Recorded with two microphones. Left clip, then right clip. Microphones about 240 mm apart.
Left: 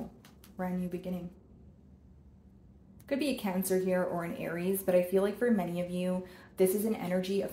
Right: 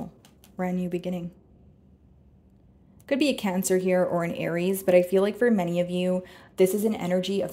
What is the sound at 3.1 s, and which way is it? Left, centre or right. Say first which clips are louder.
A woman's voice: right 8 dB; right.